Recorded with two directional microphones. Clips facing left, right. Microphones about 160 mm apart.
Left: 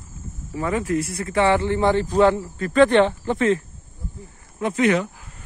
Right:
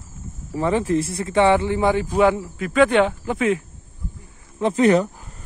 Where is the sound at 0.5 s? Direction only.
30° right (ahead or behind); by 3.6 s 10° right (ahead or behind).